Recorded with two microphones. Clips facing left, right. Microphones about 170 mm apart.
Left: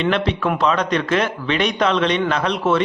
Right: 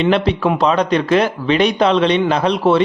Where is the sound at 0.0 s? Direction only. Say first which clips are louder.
Right 4 dB; 35° right (ahead or behind).